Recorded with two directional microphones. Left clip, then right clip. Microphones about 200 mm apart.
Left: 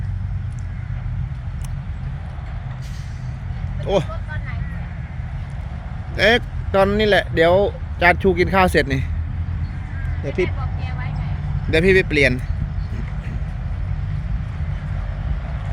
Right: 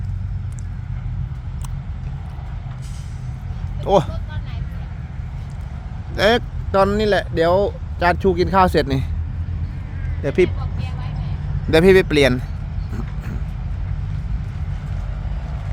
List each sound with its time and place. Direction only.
3.8 s speech: 25° right (ahead or behind)
6.1 s speech: 15° right (ahead or behind)
10.2 s speech: 50° right (ahead or behind)
11.7 s speech: 30° right (ahead or behind)